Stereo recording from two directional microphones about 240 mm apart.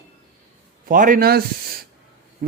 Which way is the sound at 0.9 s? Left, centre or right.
Right.